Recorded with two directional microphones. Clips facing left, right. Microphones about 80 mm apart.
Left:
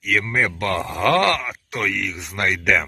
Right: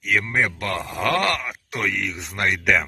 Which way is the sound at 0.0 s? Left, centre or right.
Centre.